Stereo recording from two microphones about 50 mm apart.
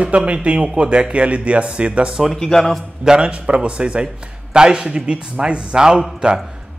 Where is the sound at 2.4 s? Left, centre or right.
Centre.